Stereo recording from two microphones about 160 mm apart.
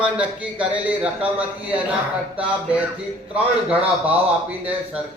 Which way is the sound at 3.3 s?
10° right (ahead or behind).